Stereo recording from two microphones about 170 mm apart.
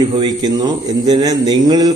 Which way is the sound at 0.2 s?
25° right (ahead or behind).